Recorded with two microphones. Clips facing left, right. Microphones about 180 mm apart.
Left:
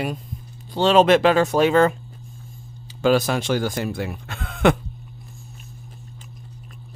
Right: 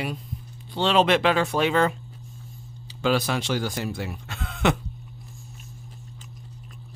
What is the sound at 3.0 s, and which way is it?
Speech, 45° left (ahead or behind).